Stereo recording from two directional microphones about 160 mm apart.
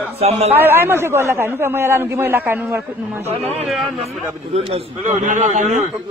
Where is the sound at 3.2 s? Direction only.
40° right (ahead or behind).